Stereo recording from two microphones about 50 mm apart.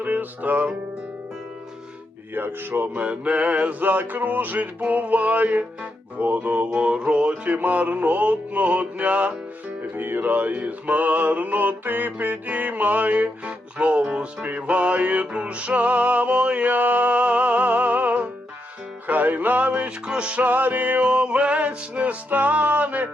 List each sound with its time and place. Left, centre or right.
0.0 s music: right
2.3 s mantra: right
6.7 s music: centre
9.9 s mantra: right
14.4 s music: right
16.7 s music: right
19.0 s mantra: right
20.5 s mantra: right